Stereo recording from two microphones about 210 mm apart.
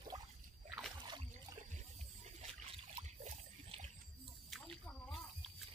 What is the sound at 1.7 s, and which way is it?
Trickle, 35° right (ahead or behind).